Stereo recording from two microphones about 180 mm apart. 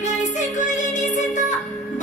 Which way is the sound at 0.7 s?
45° left (ahead or behind).